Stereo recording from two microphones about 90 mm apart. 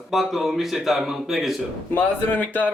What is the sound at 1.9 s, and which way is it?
Speech, 20° left (ahead or behind).